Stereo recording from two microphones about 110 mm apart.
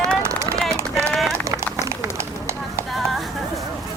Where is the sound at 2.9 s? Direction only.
Centre (ahead or behind).